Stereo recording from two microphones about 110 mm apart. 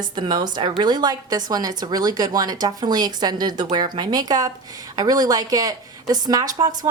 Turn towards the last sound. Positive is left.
turn(degrees=-35)  # may be behind; listen again after turning